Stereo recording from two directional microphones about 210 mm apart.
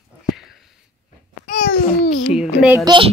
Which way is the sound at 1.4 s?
40° left (ahead or behind).